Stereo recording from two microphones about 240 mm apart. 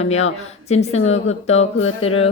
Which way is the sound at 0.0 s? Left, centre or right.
Left.